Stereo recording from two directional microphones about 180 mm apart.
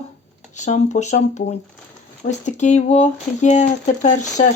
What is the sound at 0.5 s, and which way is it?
Speech, 40° left (ahead or behind).